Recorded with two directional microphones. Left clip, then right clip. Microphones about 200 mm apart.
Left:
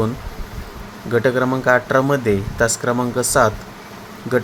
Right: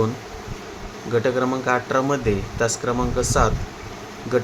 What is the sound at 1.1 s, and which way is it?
Speech, 20° left (ahead or behind).